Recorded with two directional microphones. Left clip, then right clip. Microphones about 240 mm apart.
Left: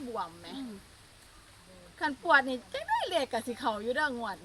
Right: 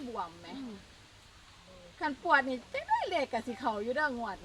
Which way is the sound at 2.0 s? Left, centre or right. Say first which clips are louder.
Left 2 dB; centre.